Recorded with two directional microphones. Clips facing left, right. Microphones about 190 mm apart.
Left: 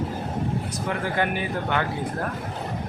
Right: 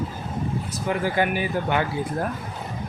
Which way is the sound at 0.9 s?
5° right (ahead or behind).